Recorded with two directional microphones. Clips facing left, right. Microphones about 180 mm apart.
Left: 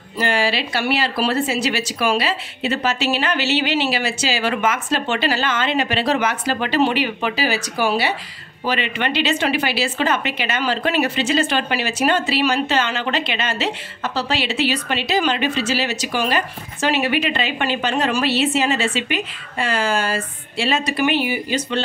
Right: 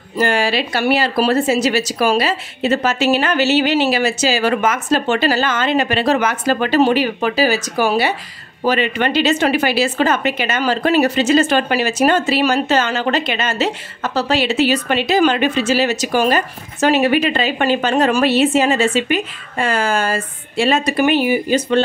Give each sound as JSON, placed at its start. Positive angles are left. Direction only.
{"t": 0.2, "sound": "a woman's voice", "side_deg": -45}